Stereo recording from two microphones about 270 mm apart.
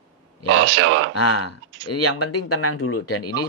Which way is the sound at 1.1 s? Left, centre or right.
Left.